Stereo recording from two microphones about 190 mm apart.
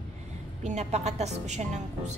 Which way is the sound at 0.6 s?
35° right (ahead or behind).